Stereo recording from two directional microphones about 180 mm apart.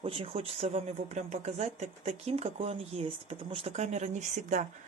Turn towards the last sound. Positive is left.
turn(degrees=-40)  # may be behind; listen again after turning